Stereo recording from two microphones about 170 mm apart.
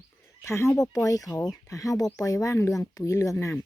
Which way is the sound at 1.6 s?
20° left (ahead or behind).